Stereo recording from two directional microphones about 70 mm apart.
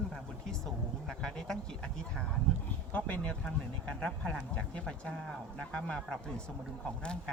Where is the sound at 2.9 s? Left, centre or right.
Left.